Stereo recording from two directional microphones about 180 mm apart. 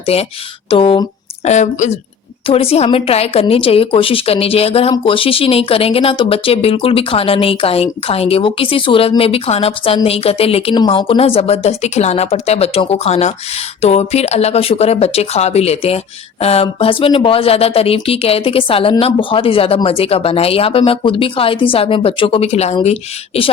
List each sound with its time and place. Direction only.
0.0 s a woman's voice: 35° left (ahead or behind)
1.5 s a woman's voice: 40° left (ahead or behind)